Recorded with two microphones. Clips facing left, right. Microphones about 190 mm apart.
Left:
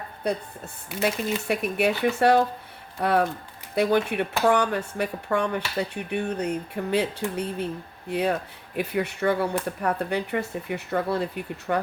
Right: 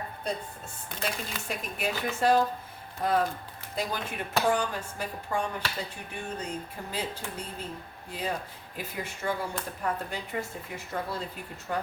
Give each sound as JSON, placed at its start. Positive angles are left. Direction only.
{"t": 1.0, "sound": "speech", "side_deg": 65}